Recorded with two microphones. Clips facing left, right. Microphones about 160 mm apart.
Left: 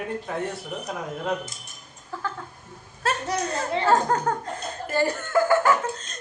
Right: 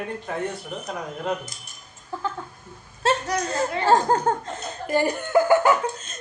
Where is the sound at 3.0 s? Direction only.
25° right (ahead or behind).